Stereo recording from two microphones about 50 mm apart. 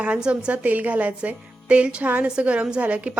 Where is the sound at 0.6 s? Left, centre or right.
Right.